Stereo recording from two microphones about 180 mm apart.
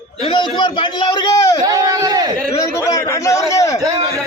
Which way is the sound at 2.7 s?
20° left (ahead or behind).